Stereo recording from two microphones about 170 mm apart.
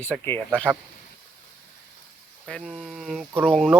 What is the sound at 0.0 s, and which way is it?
Speech, 10° left (ahead or behind).